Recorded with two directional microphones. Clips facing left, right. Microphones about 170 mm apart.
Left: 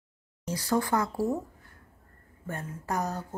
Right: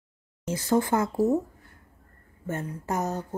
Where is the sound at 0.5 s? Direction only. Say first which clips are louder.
Right 3 dB; 25° right (ahead or behind).